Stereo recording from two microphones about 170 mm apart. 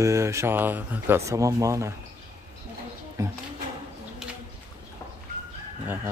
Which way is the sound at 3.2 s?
20° right (ahead or behind).